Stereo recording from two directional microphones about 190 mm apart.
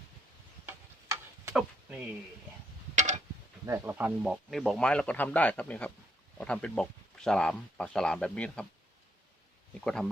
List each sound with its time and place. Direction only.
0.6 s tick-tock: 15° right (ahead or behind)
2.9 s a sound: 40° right (ahead or behind)
3.7 s speech: 10° right (ahead or behind)
9.8 s speech: 5° left (ahead or behind)